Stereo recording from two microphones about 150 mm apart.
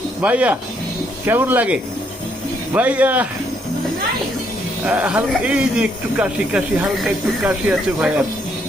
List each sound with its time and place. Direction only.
0.2 s speech: 10° right (ahead or behind)
4.9 s speech: 10° right (ahead or behind)